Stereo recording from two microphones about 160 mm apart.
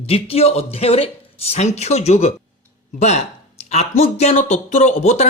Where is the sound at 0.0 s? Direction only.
40° left (ahead or behind).